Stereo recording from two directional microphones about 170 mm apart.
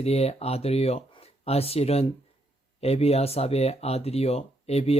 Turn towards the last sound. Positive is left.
turn(degrees=35)  # may be behind; listen again after turning